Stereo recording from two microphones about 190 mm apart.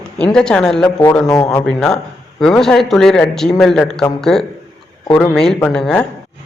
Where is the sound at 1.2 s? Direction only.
20° left (ahead or behind).